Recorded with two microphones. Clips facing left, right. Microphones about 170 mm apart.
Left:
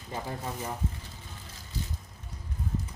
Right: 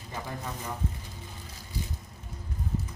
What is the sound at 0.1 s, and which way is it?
Speech, 30° left (ahead or behind).